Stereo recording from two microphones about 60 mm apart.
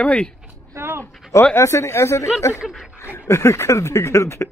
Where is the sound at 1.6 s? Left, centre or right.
Left.